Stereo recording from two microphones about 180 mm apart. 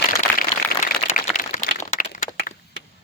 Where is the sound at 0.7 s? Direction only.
50° left (ahead or behind).